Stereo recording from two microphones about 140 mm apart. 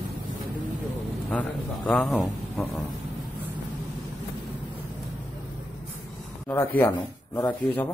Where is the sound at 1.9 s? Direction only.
Centre (ahead or behind).